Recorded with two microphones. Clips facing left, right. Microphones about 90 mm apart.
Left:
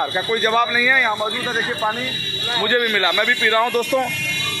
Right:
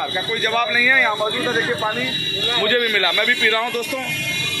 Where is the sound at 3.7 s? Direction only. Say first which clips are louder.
Left 6 dB; 35° left (ahead or behind).